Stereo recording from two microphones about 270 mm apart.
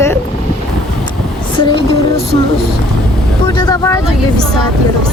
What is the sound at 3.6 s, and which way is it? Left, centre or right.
Speech, centre.